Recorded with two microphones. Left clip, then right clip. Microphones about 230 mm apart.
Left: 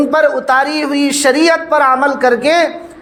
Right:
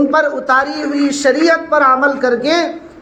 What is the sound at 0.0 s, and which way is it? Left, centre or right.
A man's voice, left.